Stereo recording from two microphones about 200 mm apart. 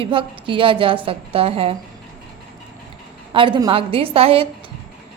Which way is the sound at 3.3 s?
25° right (ahead or behind).